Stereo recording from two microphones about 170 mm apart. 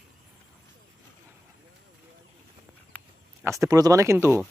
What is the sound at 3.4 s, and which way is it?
Speech, 15° right (ahead or behind).